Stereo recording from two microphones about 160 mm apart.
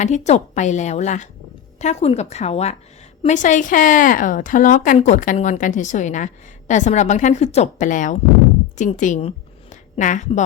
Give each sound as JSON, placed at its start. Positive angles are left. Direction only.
{"t": 0.0, "sound": "a woman's voice", "side_deg": 45}